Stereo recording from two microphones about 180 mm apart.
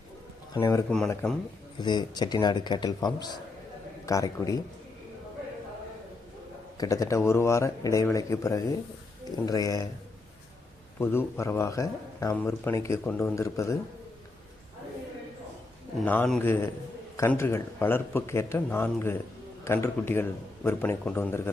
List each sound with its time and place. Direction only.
0.5 s speech: 20° left (ahead or behind)
0.9 s speech: 5° left (ahead or behind)
1.8 s speech: 25° left (ahead or behind)
6.7 s speech: 20° left (ahead or behind)
11.0 s speech: 15° left (ahead or behind)
16.0 s speech: 5° left (ahead or behind)